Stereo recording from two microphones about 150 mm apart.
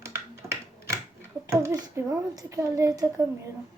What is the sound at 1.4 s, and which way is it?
Speech, 20° right (ahead or behind).